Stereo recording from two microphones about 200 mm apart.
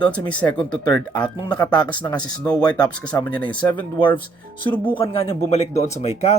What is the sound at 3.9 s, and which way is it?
Speech, 25° left (ahead or behind).